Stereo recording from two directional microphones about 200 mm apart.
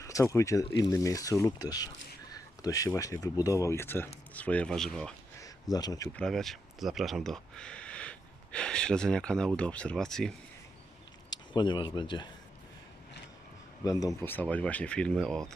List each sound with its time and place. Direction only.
0.0 s speech: 15° left (ahead or behind)
5.4 s a sound: 20° left (ahead or behind)
6.1 s speech: centre (ahead or behind)
11.3 s speech: 20° left (ahead or behind)
13.8 s speech: 15° left (ahead or behind)
14.2 s speech: 5° left (ahead or behind)